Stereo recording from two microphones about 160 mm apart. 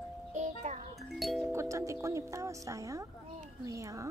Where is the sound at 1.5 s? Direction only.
20° right (ahead or behind).